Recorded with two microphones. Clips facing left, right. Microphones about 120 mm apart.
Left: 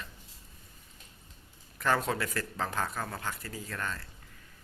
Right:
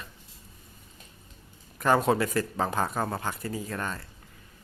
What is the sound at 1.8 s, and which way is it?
Speech, 20° right (ahead or behind).